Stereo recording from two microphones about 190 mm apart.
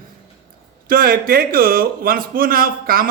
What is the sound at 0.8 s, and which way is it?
Speech, 50° right (ahead or behind).